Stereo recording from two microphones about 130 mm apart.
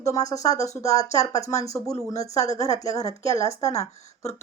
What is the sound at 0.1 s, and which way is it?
Speech, 25° left (ahead or behind).